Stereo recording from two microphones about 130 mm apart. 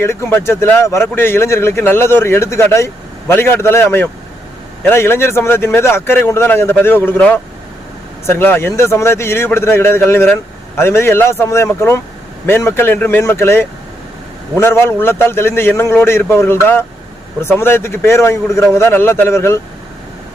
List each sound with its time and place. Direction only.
0.0 s a man's voice: 20° left (ahead or behind)